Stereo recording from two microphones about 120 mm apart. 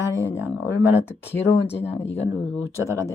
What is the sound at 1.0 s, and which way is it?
Speech, 20° left (ahead or behind).